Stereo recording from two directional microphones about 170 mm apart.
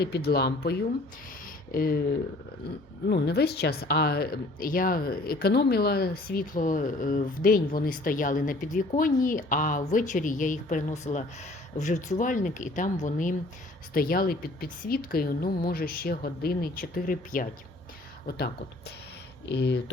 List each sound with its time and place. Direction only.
0.0 s a woman's voice: 70° left (ahead or behind); by 17.5 s 55° left (ahead or behind)
18.3 s speech: 70° left (ahead or behind)